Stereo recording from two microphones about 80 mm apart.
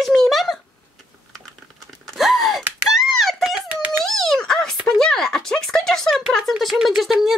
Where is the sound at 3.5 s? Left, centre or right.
Centre.